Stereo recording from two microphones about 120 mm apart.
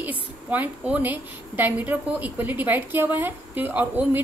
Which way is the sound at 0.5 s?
15° right (ahead or behind).